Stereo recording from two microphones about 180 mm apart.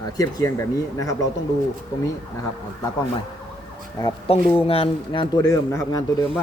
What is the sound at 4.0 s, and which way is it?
Speech, 20° left (ahead or behind).